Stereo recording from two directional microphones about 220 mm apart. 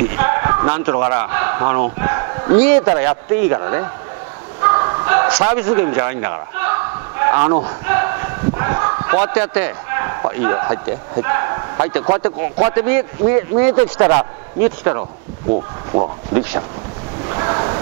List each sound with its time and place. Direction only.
0.1 s a man's voice: 15° right (ahead or behind)
4.6 s bow-wow: 15° right (ahead or behind)
7.8 s a sound: 15° right (ahead or behind)
12.2 s speech: 10° right (ahead or behind)
16.3 s speech: 10° right (ahead or behind)
17.3 s a sound: 20° right (ahead or behind)